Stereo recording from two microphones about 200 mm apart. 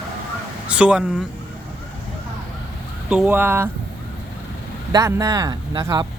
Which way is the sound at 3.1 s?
5° right (ahead or behind).